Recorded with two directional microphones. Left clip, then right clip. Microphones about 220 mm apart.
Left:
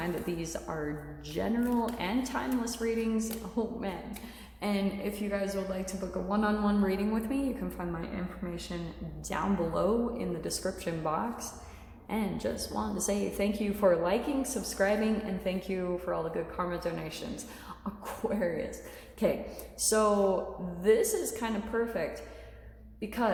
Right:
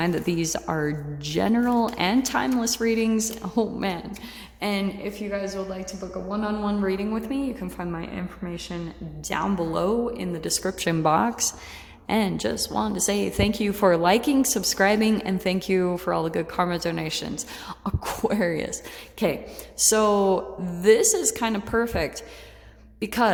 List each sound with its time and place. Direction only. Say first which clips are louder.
0.0 s a woman's voice: right 9 dB; 50° right (ahead or behind)
4.6 s speech: right 5 dB; 35° right (ahead or behind)
5.3 s a woman's voice: right 4 dB; 20° right (ahead or behind); by 23.3 s 45° right (ahead or behind)